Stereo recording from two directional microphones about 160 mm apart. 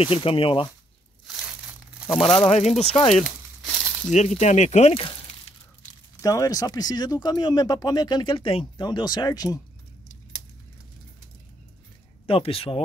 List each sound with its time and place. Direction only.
0.0 s speech: 35° left (ahead or behind)
1.2 s crushing: centre (ahead or behind)
2.0 s speech: centre (ahead or behind)
2.4 s speech: 40° left (ahead or behind)
6.2 s speech: 20° left (ahead or behind)
12.3 s speech: 35° left (ahead or behind)